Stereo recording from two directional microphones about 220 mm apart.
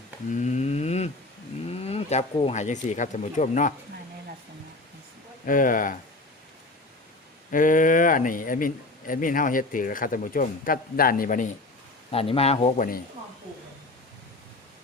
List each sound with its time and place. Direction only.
0.3 s cattle: 35° left (ahead or behind)
1.7 s speech: 25° left (ahead or behind)
5.5 s a man's voice: 35° left (ahead or behind)
7.5 s a man's voice: 35° left (ahead or behind)
12.1 s speech: 25° left (ahead or behind)